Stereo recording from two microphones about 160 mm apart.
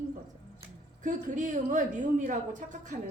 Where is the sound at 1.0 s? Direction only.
50° right (ahead or behind).